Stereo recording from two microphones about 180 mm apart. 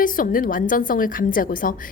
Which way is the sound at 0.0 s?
50° left (ahead or behind).